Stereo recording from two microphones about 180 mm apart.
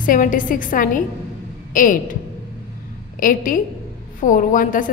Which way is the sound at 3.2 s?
50° left (ahead or behind).